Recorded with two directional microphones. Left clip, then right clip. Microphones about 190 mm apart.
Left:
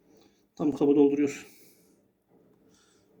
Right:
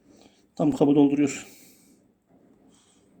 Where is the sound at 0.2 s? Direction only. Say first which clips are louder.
Right 5 dB; 45° right (ahead or behind).